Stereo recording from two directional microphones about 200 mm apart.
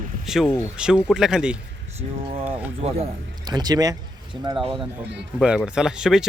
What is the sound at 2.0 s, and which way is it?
Speech, 30° right (ahead or behind).